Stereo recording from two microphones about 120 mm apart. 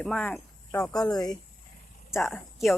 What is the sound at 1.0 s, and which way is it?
Speech, 35° left (ahead or behind).